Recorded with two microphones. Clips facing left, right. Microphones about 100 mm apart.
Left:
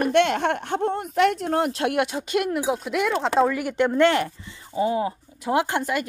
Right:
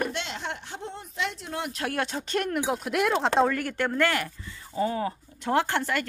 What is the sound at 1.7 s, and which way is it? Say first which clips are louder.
Speech: left 7 dB; 30° left (ahead or behind).